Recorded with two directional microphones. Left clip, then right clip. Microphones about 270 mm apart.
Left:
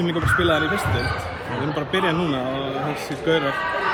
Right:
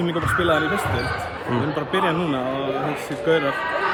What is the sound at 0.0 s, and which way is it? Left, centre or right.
Speech, centre.